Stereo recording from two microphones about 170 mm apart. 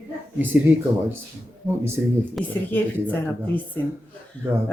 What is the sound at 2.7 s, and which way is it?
Speech, 10° left (ahead or behind).